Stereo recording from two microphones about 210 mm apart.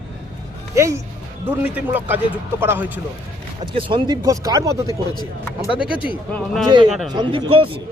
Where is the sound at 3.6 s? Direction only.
25° right (ahead or behind).